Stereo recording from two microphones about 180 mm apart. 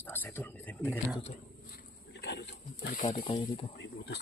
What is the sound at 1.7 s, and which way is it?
Speech, 70° left (ahead or behind).